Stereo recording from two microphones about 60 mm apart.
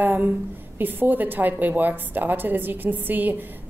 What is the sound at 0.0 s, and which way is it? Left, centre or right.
A woman's voice, right.